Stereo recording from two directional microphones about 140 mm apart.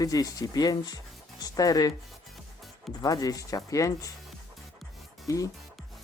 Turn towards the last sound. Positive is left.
turn(degrees=25)  # may be behind; listen again after turning